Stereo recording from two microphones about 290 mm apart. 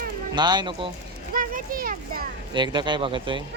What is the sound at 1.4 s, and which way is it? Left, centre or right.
Speech, right.